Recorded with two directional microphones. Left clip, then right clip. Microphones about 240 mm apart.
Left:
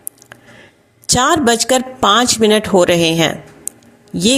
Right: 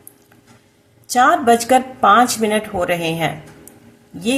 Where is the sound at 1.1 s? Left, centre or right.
Left.